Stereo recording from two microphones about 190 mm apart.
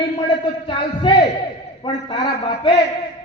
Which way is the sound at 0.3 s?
25° left (ahead or behind).